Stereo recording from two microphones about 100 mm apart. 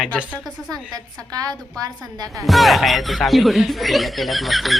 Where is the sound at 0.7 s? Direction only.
40° right (ahead or behind).